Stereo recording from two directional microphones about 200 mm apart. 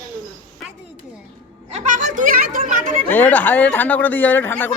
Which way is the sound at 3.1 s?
10° left (ahead or behind).